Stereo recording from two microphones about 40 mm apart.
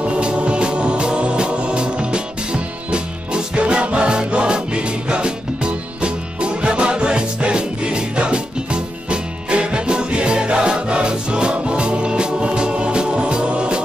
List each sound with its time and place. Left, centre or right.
0.0 s music: right